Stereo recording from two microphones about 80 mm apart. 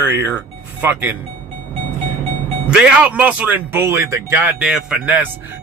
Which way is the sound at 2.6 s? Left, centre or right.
Centre.